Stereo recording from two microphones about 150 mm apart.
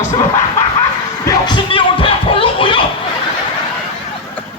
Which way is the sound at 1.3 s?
30° left (ahead or behind).